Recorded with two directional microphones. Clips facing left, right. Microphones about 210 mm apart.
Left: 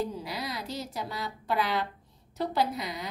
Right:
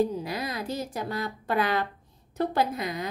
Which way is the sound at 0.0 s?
50° right (ahead or behind).